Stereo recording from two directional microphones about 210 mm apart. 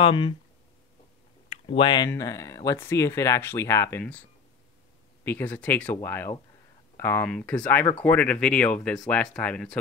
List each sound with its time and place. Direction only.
0.0 s speech: 25° left (ahead or behind)
1.5 s speech: 25° left (ahead or behind); by 4.2 s 10° left (ahead or behind)
5.2 s speech: 10° left (ahead or behind)